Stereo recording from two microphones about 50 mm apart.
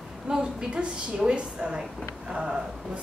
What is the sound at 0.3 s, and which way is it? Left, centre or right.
A woman's voice, centre.